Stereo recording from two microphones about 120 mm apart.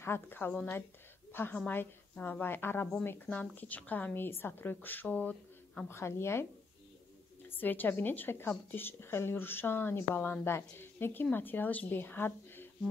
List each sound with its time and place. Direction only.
0.0 s a woman's voice: 20° left (ahead or behind)
7.4 s speech: 15° left (ahead or behind)